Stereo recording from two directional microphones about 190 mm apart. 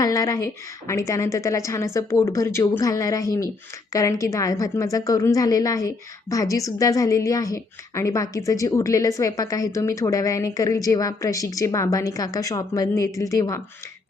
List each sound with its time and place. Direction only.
0.0 s a woman's voice: 20° left (ahead or behind)